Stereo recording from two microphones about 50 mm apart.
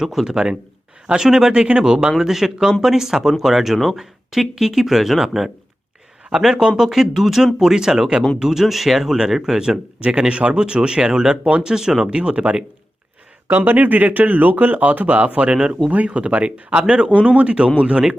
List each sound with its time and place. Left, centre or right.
0.0 s speech: centre
13.5 s speech: right